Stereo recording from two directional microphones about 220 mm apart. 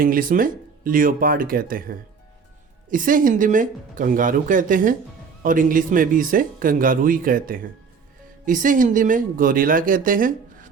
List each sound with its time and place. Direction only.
0.0 s speech: 40° right (ahead or behind)